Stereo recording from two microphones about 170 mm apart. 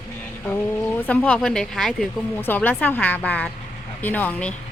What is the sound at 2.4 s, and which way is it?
Speech, 10° left (ahead or behind).